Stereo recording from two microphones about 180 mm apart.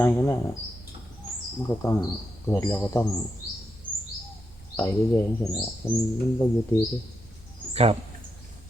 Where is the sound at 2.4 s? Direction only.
10° left (ahead or behind).